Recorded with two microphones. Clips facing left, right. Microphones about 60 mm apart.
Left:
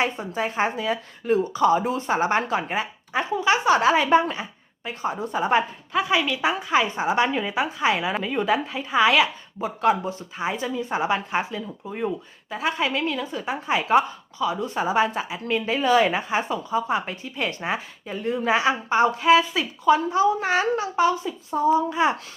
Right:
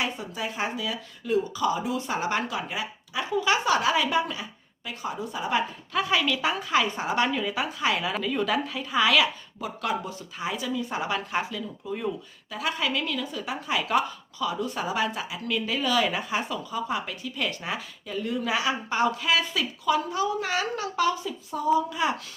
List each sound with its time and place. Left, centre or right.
0.0 s speech: left
3.3 s speech: left
5.9 s speech: left